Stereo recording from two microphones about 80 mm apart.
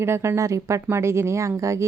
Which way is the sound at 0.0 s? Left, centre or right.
Right.